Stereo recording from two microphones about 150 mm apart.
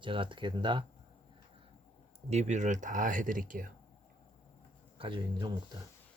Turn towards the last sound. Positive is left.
turn(degrees=-35)  # may be behind; listen again after turning